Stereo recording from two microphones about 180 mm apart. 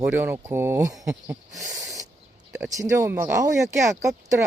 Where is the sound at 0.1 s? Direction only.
10° right (ahead or behind).